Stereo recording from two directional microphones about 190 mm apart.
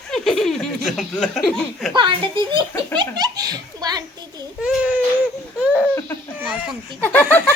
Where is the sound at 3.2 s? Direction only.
20° right (ahead or behind).